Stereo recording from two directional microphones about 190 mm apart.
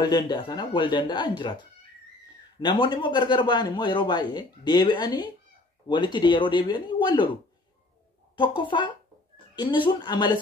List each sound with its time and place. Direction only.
0.0 s speech: 20° left (ahead or behind)
8.4 s speech: 25° left (ahead or behind)